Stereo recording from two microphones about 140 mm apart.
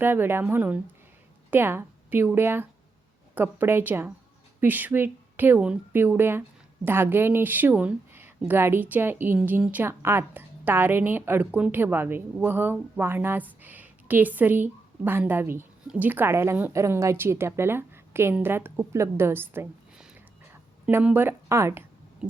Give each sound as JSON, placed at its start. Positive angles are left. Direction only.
{"t": 0.0, "sound": "a woman's voice", "side_deg": -15}